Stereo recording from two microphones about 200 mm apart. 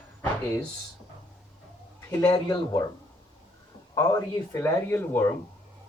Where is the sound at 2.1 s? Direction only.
15° left (ahead or behind).